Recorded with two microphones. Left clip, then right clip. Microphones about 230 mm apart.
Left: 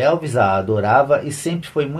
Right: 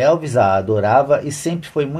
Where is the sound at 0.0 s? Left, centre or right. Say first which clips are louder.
Right 2 dB; right.